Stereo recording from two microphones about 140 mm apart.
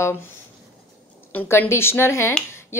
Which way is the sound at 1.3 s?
15° left (ahead or behind).